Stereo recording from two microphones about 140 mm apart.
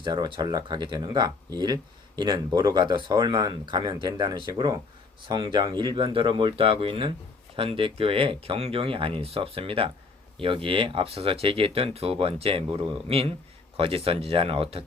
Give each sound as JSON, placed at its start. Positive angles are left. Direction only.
{"t": 0.0, "sound": "speech", "side_deg": -35}